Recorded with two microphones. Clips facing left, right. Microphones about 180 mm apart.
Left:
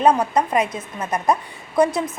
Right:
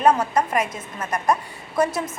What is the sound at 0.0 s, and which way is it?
A woman's voice, 15° left (ahead or behind).